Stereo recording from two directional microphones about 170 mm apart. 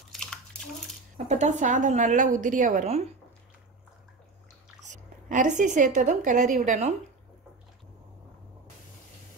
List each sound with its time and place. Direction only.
0.1 s bathtub: 5° left (ahead or behind)
1.1 s a woman's voice: 45° right (ahead or behind)
4.8 s a woman's voice: 45° right (ahead or behind)